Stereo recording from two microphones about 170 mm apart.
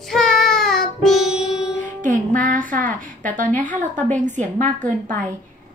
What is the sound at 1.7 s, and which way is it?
Music, 50° right (ahead or behind).